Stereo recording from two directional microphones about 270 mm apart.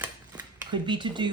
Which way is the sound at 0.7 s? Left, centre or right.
Centre.